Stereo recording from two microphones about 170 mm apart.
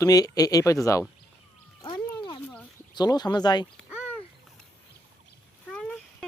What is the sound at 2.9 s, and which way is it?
Speech, 25° left (ahead or behind).